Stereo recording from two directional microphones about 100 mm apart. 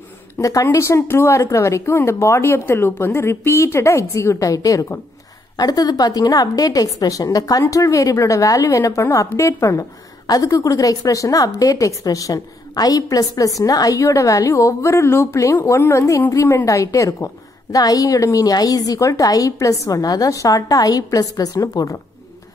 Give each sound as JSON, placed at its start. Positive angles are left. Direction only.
{"t": 0.4, "sound": "a woman's voice", "side_deg": 35}